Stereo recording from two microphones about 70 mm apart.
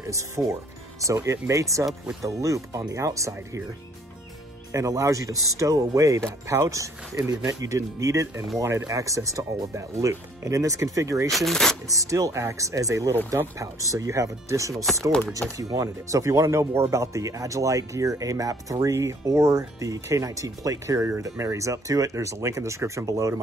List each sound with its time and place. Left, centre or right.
0.0 s speech: right
4.7 s speech: right
11.2 s speech: centre
11.9 s speech: right
21.2 s speech: right